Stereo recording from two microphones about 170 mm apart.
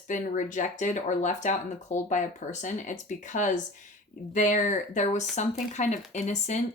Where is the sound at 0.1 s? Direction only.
50° left (ahead or behind).